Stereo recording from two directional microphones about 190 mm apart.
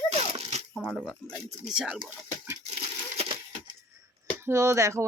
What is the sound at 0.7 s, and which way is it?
Speech, centre (ahead or behind).